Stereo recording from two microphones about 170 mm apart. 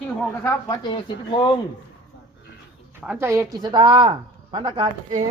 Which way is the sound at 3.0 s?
15° right (ahead or behind).